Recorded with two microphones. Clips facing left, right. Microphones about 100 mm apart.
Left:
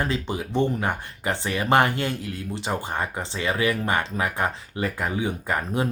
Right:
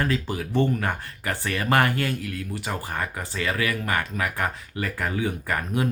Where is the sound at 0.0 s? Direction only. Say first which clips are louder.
Even; 20° left (ahead or behind).